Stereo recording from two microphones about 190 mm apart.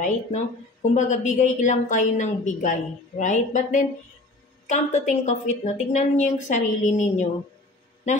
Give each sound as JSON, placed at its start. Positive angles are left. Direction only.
{"t": 0.8, "sound": "a woman's voice", "side_deg": 40}